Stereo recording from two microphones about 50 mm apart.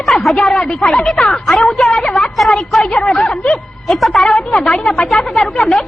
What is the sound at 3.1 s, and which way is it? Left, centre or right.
Speech, left.